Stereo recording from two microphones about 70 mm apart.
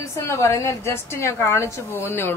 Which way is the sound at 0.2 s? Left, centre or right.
Left.